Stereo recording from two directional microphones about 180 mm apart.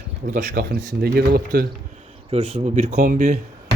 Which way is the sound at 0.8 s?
60° right (ahead or behind).